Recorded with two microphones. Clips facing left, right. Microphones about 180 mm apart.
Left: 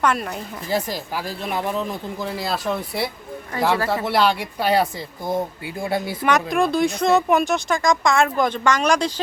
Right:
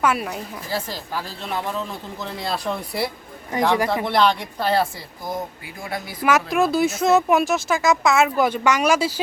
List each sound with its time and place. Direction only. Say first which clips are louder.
0.0 s speech: even; 5° right (ahead or behind)
0.7 s speech: left 4 dB; 15° left (ahead or behind)
5.2 s speech: left 5 dB; 30° left (ahead or behind)
6.2 s speech: right 1 dB; 5° right (ahead or behind)